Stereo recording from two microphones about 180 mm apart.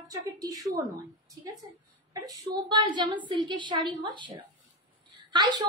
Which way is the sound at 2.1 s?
20° right (ahead or behind).